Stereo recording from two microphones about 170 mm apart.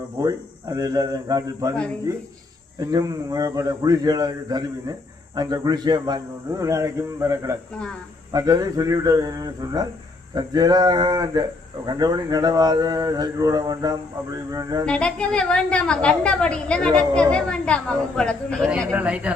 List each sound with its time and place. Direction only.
0.2 s speech: 20° right (ahead or behind)
2.8 s speech: 20° right (ahead or behind)
14.8 s a woman's voice: 5° left (ahead or behind)
18.9 s speech: 5° right (ahead or behind)